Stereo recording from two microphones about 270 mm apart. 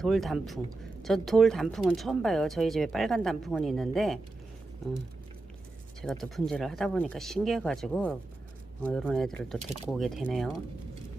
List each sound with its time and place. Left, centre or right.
0.0 s speech: centre
6.0 s speech: centre